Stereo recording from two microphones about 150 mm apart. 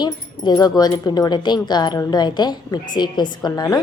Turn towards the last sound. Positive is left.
turn(degrees=25)  # may be behind; listen again after turning